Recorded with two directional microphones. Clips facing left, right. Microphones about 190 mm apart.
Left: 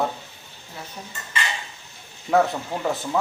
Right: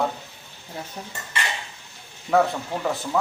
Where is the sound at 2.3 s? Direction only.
Centre (ahead or behind).